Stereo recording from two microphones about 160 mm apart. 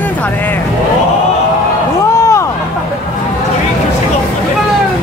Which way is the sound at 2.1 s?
20° left (ahead or behind).